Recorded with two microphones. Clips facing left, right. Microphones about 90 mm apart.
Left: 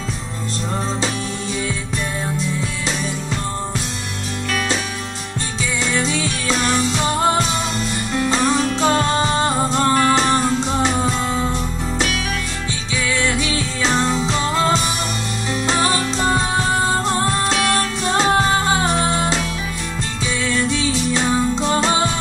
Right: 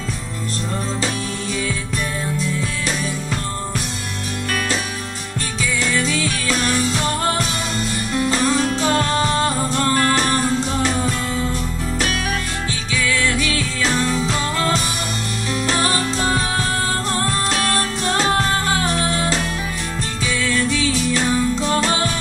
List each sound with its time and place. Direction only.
5.9 s music: 20° left (ahead or behind)
13.2 s music: 20° left (ahead or behind)
17.1 s music: 20° left (ahead or behind)
20.4 s music: 20° left (ahead or behind)